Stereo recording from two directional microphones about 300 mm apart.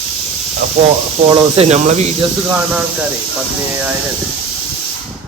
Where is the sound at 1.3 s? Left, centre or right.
Centre.